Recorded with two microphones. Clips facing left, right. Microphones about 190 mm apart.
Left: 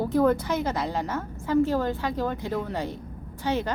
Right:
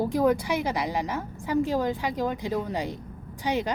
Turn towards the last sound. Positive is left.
turn(degrees=-15)  # may be behind; listen again after turning